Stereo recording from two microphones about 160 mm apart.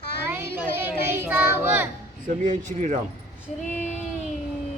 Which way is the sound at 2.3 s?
50° right (ahead or behind).